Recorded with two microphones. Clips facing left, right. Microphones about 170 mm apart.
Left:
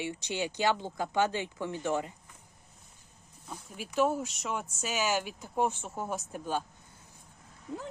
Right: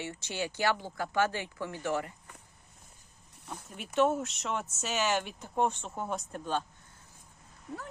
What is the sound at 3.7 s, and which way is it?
Speech, centre (ahead or behind).